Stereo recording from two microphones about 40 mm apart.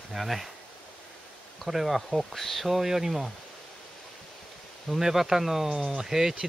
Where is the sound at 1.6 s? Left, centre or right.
Centre.